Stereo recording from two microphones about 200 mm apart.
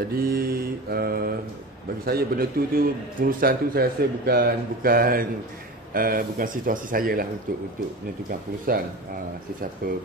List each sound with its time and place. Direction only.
0.1 s a man's voice: 50° right (ahead or behind)
8.7 s a man's voice: 45° right (ahead or behind)